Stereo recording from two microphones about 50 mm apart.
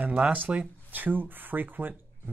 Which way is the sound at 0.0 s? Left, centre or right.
Right.